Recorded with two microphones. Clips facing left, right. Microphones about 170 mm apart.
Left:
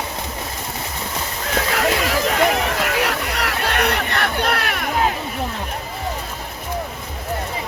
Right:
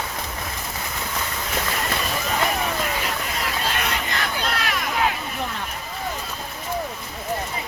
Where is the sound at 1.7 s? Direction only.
85° left; by 4.9 s 60° left (ahead or behind).